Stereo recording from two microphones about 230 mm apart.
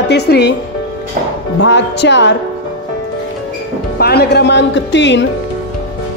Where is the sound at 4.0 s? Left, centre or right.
Left.